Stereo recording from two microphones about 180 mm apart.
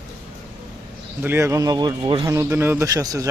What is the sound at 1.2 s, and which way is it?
Speech, 15° right (ahead or behind).